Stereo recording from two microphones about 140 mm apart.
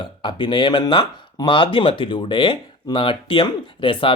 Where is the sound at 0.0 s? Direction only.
35° left (ahead or behind).